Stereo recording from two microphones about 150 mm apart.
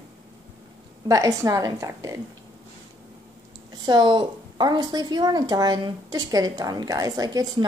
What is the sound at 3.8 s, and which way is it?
A woman's voice, 30° right (ahead or behind).